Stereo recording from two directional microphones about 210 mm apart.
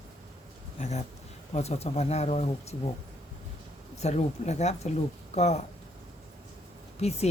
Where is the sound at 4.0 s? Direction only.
30° left (ahead or behind).